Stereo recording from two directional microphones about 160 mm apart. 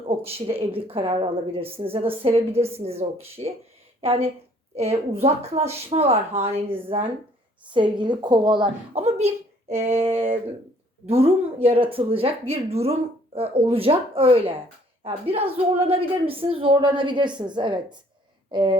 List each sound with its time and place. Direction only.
0.1 s speech: 40° right (ahead or behind)
11.1 s speech: 40° right (ahead or behind)
18.5 s a sound: 30° right (ahead or behind)